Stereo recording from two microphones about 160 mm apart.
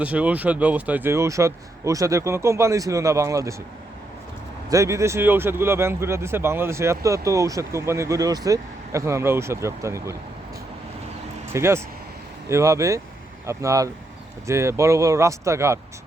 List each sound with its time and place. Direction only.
0.0 s speech: 10° right (ahead or behind)
4.7 s speech: 20° right (ahead or behind)
11.5 s speech: 15° right (ahead or behind)